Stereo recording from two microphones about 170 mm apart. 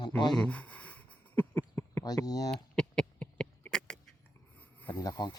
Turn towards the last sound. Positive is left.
turn(degrees=25)  # may be behind; listen again after turning